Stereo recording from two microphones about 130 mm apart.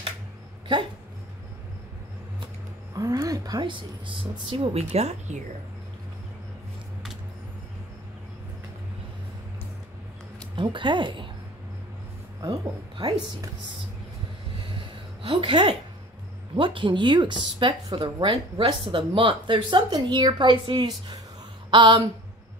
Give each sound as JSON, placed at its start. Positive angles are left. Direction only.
{"t": 2.9, "sound": "a woman's voice", "side_deg": -25}
{"t": 10.5, "sound": "speech", "side_deg": -40}
{"t": 12.4, "sound": "speech", "side_deg": -35}
{"t": 14.8, "sound": "a sound", "side_deg": -40}
{"t": 16.5, "sound": "speech", "side_deg": -40}